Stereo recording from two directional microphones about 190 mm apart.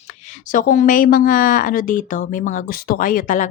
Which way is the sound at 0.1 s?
40° left (ahead or behind).